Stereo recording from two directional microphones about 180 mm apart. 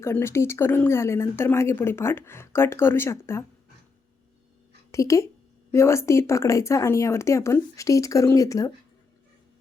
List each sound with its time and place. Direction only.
0.0 s a woman's voice: 15° left (ahead or behind)
4.9 s a woman's voice: 15° left (ahead or behind)